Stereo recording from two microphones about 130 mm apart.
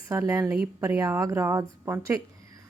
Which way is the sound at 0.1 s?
25° right (ahead or behind).